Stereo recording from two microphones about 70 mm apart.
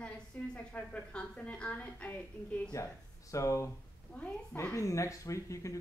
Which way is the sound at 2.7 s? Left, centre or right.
Left.